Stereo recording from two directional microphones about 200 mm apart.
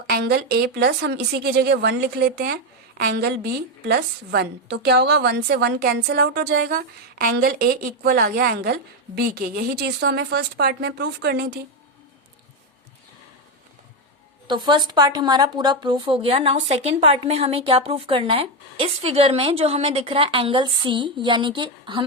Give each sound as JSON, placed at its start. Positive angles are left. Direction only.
{"t": 0.1, "sound": "a woman's voice", "side_deg": -55}
{"t": 14.4, "sound": "a woman's voice", "side_deg": -20}